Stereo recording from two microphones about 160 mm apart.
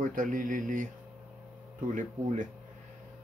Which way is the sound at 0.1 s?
55° right (ahead or behind).